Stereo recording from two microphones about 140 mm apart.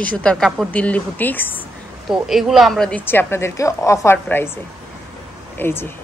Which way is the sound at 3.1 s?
15° left (ahead or behind).